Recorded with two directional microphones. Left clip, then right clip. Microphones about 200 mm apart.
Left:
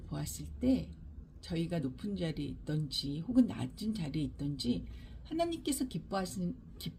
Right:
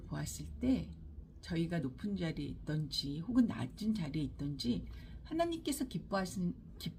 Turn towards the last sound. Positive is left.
turn(degrees=10)  # may be behind; listen again after turning